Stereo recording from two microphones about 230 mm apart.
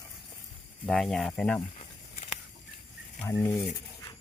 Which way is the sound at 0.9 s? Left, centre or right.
Centre.